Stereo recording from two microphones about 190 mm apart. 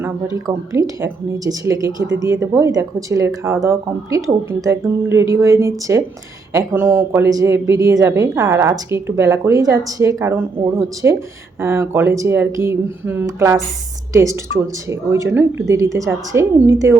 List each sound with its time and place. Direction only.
0.0 s a woman's voice: 15° right (ahead or behind)